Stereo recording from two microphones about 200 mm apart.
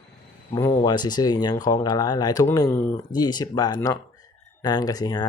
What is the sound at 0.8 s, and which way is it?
Speech, 20° left (ahead or behind).